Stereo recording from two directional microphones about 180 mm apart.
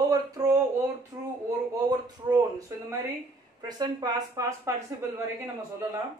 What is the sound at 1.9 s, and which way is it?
Speech, 25° right (ahead or behind).